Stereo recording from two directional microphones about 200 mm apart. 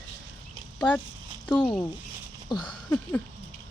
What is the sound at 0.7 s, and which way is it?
Speech, 10° left (ahead or behind).